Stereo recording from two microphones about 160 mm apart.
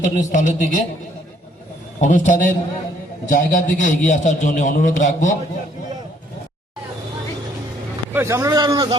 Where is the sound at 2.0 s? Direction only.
55° left (ahead or behind).